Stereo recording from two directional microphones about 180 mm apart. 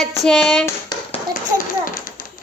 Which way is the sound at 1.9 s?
50° left (ahead or behind).